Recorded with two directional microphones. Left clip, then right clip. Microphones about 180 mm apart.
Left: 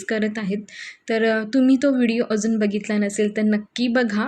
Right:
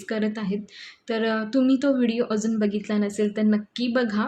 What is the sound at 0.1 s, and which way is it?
A woman's voice, 15° left (ahead or behind).